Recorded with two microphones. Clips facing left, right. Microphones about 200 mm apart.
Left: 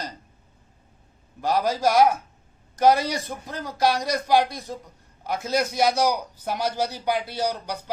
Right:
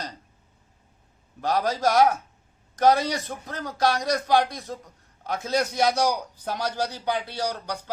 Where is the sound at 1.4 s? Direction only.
5° left (ahead or behind).